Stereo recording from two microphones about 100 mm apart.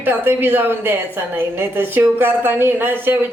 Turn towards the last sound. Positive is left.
turn(degrees=-20)  # may be behind; listen again after turning